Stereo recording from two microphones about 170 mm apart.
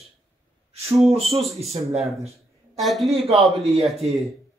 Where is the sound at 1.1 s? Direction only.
35° right (ahead or behind).